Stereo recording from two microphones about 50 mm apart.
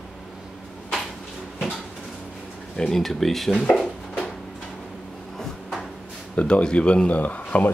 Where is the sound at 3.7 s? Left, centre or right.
Centre.